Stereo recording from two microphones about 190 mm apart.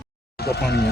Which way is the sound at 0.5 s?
60° left (ahead or behind).